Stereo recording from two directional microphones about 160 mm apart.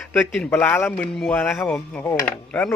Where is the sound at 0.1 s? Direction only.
10° left (ahead or behind).